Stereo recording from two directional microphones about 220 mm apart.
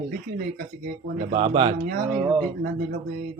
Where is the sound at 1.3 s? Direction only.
25° right (ahead or behind).